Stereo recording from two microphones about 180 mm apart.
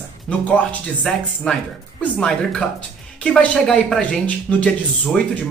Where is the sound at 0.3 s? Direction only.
5° left (ahead or behind).